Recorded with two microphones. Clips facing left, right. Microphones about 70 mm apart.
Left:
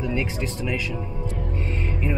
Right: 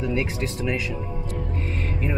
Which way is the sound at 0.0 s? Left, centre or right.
Centre.